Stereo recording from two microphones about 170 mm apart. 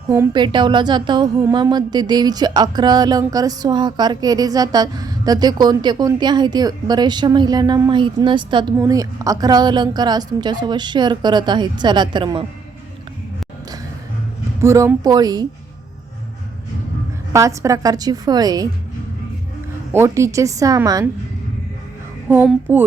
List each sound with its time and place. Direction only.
0.3 s speech: 25° right (ahead or behind)
14.6 s speech: 15° right (ahead or behind)
17.3 s speech: 20° right (ahead or behind)
19.9 s a woman's voice: 15° right (ahead or behind)
22.6 s a woman's voice: 10° right (ahead or behind)